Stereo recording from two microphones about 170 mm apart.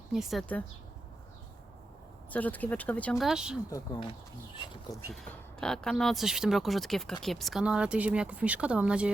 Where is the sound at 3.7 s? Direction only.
20° left (ahead or behind).